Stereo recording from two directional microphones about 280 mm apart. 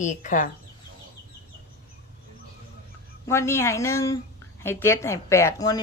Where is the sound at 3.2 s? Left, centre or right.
Centre.